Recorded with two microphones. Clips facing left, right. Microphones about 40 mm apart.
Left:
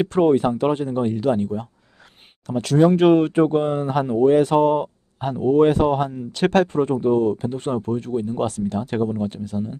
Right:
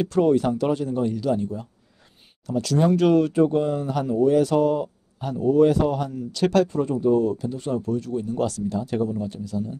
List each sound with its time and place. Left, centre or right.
0.0 s speech: left
8.6 s speech: left